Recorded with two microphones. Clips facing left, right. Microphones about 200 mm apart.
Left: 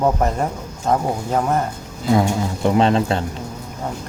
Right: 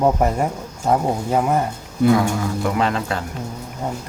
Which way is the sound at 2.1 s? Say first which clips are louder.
Left 1 dB; 25° left (ahead or behind).